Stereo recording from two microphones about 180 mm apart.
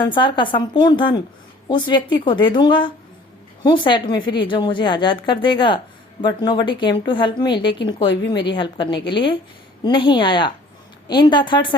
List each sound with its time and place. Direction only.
0.0 s a woman's voice: 25° left (ahead or behind)